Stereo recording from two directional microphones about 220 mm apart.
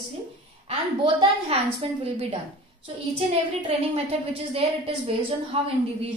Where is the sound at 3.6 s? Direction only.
25° right (ahead or behind).